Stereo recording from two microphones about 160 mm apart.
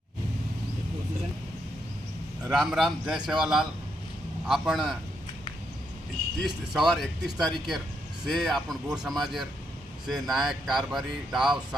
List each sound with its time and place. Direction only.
2.4 s speech: centre (ahead or behind)
6.4 s speech: centre (ahead or behind)